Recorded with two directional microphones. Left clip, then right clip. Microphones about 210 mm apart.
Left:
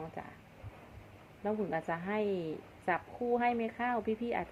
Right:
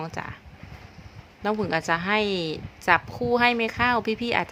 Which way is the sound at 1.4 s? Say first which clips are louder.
Right 10 dB; 45° right (ahead or behind).